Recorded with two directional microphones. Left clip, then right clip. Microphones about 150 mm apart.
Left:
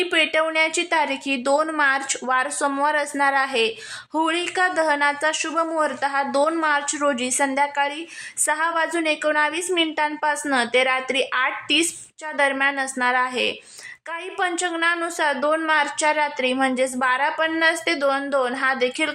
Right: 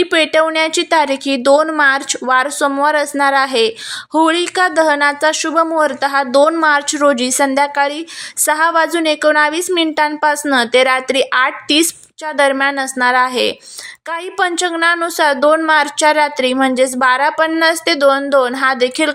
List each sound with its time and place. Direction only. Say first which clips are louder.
0.0 s a woman's voice: right 7 dB; 35° right (ahead or behind)